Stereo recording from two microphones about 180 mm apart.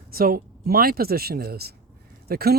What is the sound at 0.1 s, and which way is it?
Speech, 55° right (ahead or behind).